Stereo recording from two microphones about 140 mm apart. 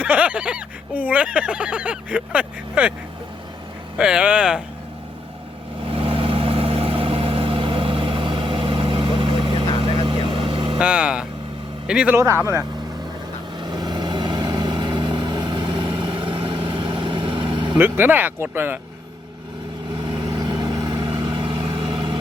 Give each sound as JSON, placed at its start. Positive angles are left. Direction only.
{"t": 0.0, "sound": "a sound", "side_deg": -10}
{"t": 3.9, "sound": "speech", "side_deg": -5}
{"t": 5.8, "sound": "vehicle", "side_deg": -40}
{"t": 10.8, "sound": "speech", "side_deg": -10}
{"t": 12.1, "sound": "speech", "side_deg": -20}
{"t": 13.6, "sound": "vehicle", "side_deg": -30}
{"t": 17.7, "sound": "speech", "side_deg": -15}
{"t": 20.0, "sound": "vehicle", "side_deg": -30}